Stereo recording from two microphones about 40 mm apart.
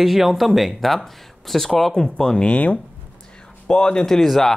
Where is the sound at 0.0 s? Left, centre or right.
Centre.